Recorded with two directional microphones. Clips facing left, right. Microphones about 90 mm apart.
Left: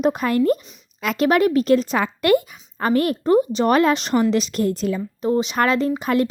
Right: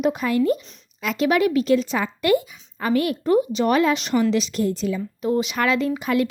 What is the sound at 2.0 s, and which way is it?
A woman's voice, 55° left (ahead or behind).